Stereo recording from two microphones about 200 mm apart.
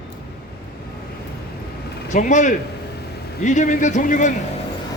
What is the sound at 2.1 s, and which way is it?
A man's voice, 35° left (ahead or behind).